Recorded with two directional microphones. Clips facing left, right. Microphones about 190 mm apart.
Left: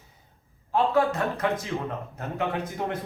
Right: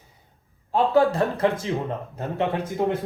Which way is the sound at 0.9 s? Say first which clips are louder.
Right 4 dB; 30° right (ahead or behind).